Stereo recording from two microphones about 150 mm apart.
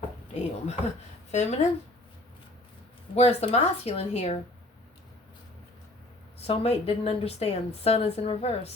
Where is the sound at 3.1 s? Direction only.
45° left (ahead or behind).